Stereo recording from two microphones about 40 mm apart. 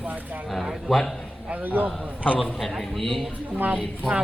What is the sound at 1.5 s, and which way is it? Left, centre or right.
Speech, right.